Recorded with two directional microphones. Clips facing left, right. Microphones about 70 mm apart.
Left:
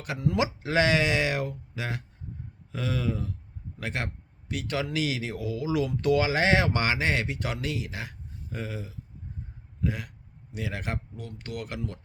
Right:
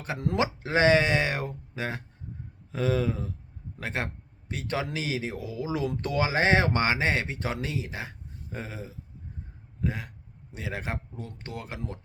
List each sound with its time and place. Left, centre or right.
0.7 s speech: right